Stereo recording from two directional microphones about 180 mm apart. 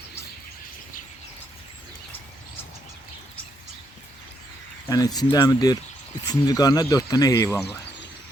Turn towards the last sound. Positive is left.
turn(degrees=20)  # may be behind; listen again after turning